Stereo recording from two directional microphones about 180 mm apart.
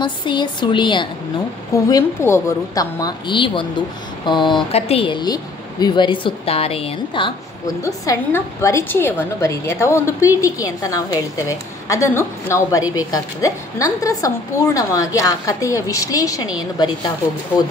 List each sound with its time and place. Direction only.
0.0 s a woman's voice: 25° left (ahead or behind)
7.8 s a woman's voice: 15° left (ahead or behind)